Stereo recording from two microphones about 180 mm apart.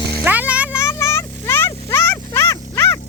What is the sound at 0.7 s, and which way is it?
Vehicle, 15° left (ahead or behind).